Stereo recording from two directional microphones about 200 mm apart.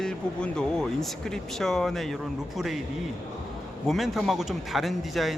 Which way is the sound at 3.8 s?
Centre (ahead or behind).